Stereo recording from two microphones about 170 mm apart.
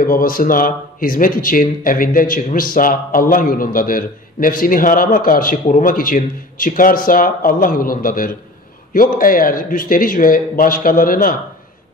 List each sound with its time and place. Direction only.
0.0 s speech: 60° left (ahead or behind)